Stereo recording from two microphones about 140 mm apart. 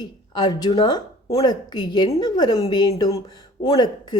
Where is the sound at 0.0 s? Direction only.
30° left (ahead or behind).